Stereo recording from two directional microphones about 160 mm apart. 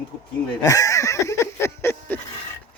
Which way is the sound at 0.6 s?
20° left (ahead or behind).